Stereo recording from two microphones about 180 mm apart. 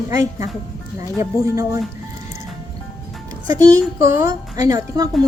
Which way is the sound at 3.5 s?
20° right (ahead or behind).